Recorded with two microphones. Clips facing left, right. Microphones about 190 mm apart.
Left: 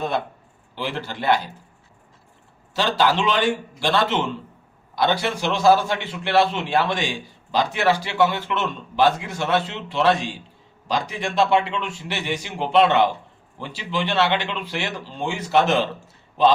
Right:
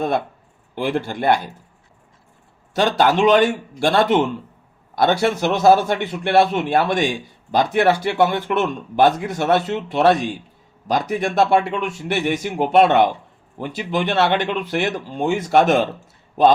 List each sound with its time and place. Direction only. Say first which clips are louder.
0.8 s a man's voice: right 6 dB; 50° right (ahead or behind)
2.7 s a man's voice: right 4 dB; 50° right (ahead or behind)
5.2 s a man's voice: right 4 dB; 50° right (ahead or behind)